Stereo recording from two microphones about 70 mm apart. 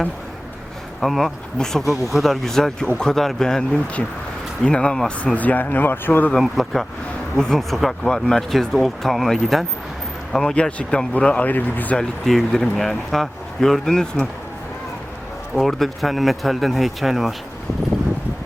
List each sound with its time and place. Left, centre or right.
1.0 s speech: centre; by 6.3 s left
6.4 s speech: centre
10.3 s speech: centre
11.9 s speech: centre
15.5 s speech: centre